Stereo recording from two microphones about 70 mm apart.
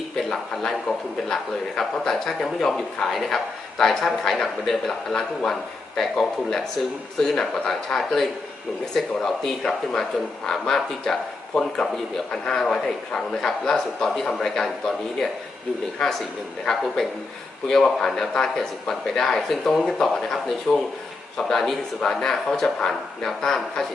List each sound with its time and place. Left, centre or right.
0.2 s a man's voice: centre